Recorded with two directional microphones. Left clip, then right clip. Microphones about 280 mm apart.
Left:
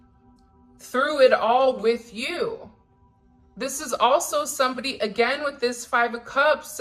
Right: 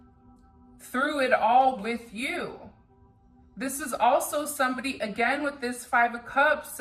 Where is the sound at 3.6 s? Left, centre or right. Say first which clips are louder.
Left 3 dB; centre.